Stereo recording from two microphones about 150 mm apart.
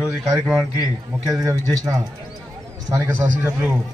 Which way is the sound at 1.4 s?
20° right (ahead or behind).